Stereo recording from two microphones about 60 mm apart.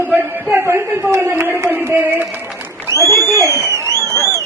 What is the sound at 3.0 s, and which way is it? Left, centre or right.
Speech, left.